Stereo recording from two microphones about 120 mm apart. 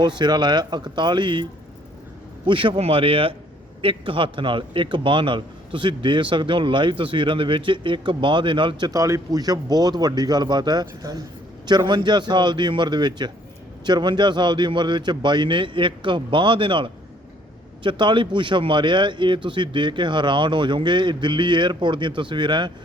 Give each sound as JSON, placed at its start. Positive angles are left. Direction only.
{"t": 0.0, "sound": "a man's voice", "side_deg": -40}
{"t": 2.5, "sound": "a man's voice", "side_deg": -45}
{"t": 8.9, "sound": "a man's voice", "side_deg": -25}